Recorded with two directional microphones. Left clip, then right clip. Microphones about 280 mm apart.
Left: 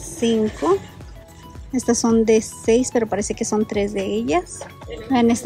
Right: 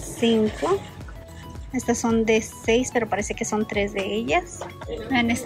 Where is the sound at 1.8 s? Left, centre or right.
Centre.